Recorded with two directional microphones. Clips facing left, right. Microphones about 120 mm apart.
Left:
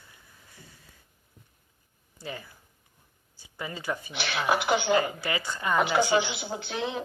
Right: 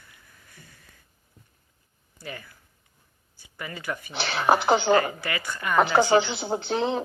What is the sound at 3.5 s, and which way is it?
Speech, 15° left (ahead or behind).